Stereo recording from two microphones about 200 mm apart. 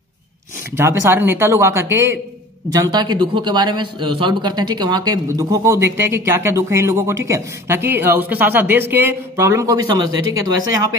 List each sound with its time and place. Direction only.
0.7 s a man's voice: 15° right (ahead or behind)